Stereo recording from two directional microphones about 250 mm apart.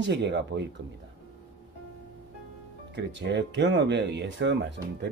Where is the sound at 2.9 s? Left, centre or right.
Right.